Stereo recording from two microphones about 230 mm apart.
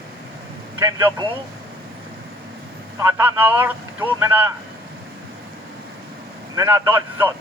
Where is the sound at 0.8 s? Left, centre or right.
Centre.